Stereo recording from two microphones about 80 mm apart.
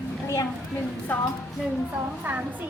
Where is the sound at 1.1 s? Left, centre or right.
Centre.